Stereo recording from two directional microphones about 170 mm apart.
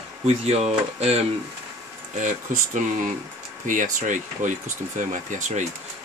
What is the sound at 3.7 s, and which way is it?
Speech, 50° right (ahead or behind).